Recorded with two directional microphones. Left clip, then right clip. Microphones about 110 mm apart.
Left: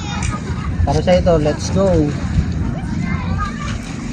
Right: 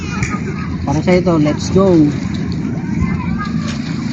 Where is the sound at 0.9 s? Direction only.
10° left (ahead or behind).